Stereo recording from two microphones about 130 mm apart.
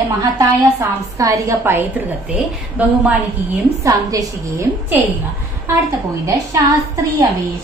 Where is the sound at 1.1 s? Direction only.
25° right (ahead or behind).